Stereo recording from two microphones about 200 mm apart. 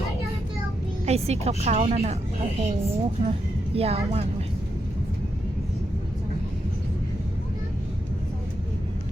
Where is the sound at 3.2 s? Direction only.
30° right (ahead or behind).